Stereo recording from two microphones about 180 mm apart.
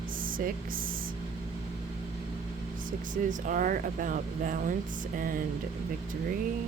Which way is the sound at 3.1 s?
45° right (ahead or behind).